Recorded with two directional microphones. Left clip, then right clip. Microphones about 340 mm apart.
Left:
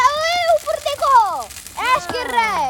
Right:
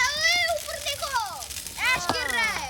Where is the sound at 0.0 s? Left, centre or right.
Centre.